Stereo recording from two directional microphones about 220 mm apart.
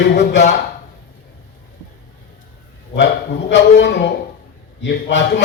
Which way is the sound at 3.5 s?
50° left (ahead or behind).